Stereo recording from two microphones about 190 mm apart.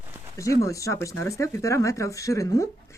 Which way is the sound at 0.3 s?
15° left (ahead or behind).